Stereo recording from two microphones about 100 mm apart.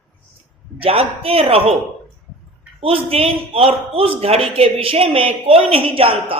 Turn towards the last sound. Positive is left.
turn(degrees=-70)  # may be behind; listen again after turning